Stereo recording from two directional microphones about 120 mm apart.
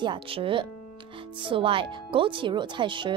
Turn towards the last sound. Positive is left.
turn(degrees=-40)  # may be behind; listen again after turning